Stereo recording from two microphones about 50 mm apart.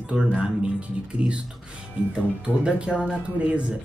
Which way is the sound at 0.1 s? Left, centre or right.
Right.